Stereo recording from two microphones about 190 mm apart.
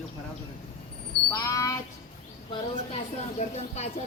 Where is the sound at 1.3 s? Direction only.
15° left (ahead or behind).